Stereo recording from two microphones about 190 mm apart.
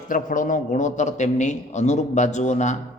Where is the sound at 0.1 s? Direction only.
45° left (ahead or behind).